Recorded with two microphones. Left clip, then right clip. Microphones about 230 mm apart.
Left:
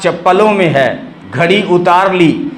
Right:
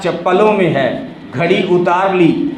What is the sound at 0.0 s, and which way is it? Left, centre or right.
A man's voice, left.